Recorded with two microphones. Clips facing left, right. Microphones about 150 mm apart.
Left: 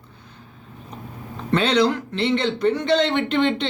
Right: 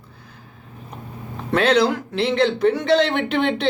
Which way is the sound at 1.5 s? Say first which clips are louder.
Right 1 dB; 5° right (ahead or behind).